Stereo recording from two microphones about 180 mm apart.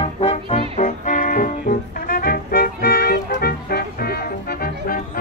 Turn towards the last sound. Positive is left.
turn(degrees=55)  # may be behind; listen again after turning